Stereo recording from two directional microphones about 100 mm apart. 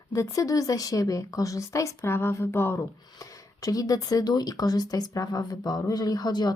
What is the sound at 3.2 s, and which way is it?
Speech, 40° left (ahead or behind).